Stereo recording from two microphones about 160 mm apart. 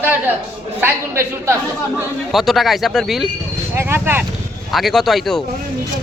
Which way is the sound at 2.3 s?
Centre (ahead or behind).